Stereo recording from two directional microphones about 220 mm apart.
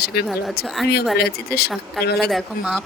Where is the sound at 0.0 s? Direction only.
45° left (ahead or behind).